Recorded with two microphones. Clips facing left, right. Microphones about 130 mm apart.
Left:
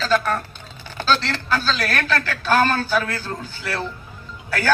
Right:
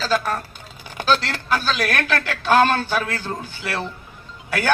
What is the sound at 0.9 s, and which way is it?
A man's voice, 15° right (ahead or behind).